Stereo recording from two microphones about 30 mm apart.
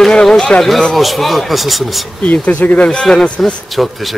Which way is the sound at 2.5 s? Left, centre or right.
Left.